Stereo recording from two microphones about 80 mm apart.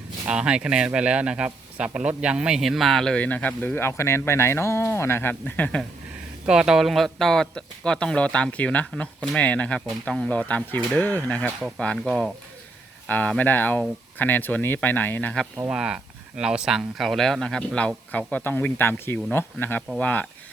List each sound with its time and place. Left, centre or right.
0.3 s speech: centre
3.2 s speech: centre
6.4 s speech: centre
11.8 s speech: centre
15.7 s speech: centre